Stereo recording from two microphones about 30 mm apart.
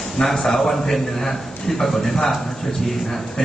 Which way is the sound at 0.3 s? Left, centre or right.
Centre.